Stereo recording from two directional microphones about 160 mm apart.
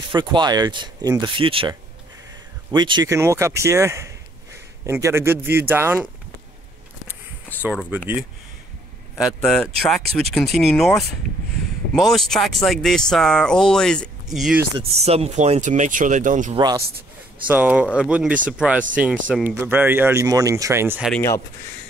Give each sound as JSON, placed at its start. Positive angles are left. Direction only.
{"t": 0.1, "sound": "speech", "side_deg": -30}
{"t": 9.2, "sound": "speech", "side_deg": 0}
{"t": 14.8, "sound": "speech", "side_deg": -40}
{"t": 16.5, "sound": "speech", "side_deg": -25}
{"t": 17.5, "sound": "speech", "side_deg": -10}